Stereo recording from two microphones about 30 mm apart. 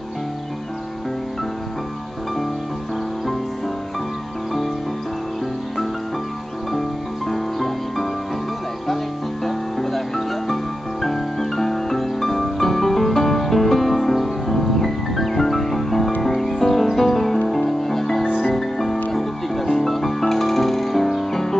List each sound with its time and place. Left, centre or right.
7.2 s music: centre